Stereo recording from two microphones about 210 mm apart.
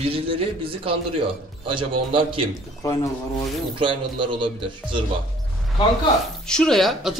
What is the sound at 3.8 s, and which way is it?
Speech, 25° right (ahead or behind).